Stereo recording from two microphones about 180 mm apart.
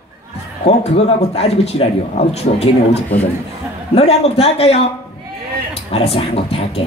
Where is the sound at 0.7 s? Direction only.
35° left (ahead or behind).